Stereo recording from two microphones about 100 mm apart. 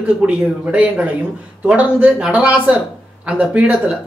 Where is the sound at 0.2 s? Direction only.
15° right (ahead or behind).